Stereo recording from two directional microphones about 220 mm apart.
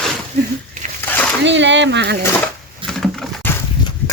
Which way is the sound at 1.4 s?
55° right (ahead or behind).